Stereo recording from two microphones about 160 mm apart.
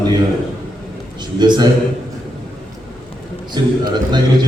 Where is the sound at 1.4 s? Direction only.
25° right (ahead or behind).